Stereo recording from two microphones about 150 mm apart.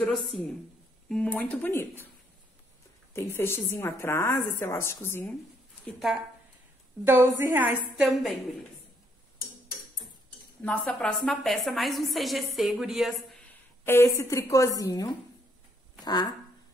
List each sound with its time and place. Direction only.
0.0 s a woman's voice: centre (ahead or behind)
3.1 s a woman's voice: 15° left (ahead or behind)
5.9 s a woman's voice: centre (ahead or behind)
7.1 s a woman's voice: 15° right (ahead or behind)
7.9 s a woman's voice: centre (ahead or behind)
10.6 s a woman's voice: 5° left (ahead or behind)
13.5 s a woman's voice: 15° left (ahead or behind)